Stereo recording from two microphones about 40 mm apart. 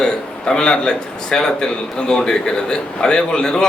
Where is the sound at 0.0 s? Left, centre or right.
Centre.